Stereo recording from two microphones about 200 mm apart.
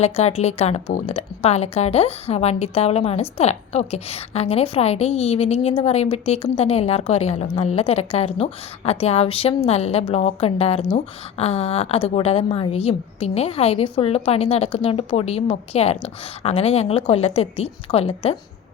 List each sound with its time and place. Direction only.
0.0 s a woman's voice: 30° left (ahead or behind)